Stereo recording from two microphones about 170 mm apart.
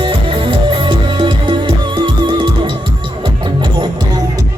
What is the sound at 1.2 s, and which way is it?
Music, 30° right (ahead or behind).